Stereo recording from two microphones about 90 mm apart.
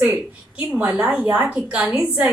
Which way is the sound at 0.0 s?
20° right (ahead or behind).